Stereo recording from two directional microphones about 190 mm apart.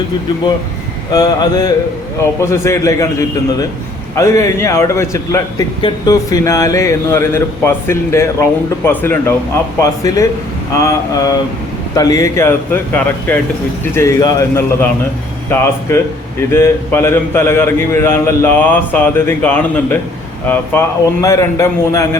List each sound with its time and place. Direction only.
1.1 s a man's voice: 20° left (ahead or behind)
15.9 s a man's voice: 15° left (ahead or behind)